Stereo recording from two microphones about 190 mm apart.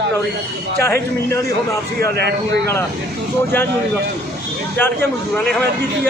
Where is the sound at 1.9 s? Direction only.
55° right (ahead or behind).